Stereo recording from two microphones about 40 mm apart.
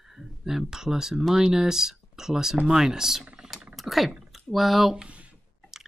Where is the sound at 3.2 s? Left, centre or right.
Right.